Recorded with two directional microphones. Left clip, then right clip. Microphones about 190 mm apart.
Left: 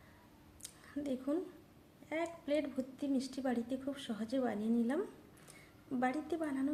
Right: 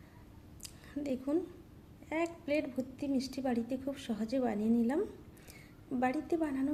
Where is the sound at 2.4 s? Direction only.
20° right (ahead or behind).